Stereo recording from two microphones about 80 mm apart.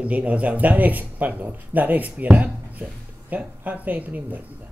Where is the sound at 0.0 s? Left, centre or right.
Centre.